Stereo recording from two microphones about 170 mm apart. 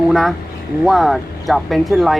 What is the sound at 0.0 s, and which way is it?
Speech, centre (ahead or behind).